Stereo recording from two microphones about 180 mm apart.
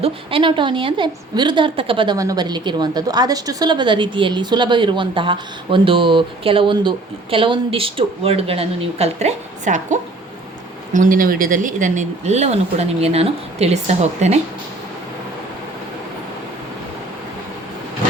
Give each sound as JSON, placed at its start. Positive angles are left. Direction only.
{"t": 0.0, "sound": "a woman's voice", "side_deg": -30}